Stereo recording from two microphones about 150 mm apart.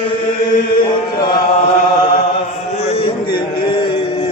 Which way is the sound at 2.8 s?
40° left (ahead or behind).